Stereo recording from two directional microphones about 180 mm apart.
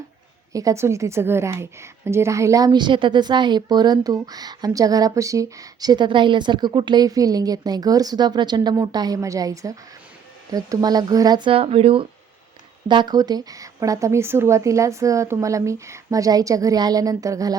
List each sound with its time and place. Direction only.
0.5 s a woman's voice: 20° right (ahead or behind)